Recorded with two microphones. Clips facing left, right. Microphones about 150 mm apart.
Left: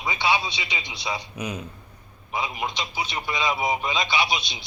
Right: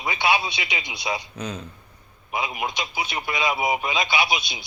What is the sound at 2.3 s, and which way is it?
A man's voice, 10° right (ahead or behind).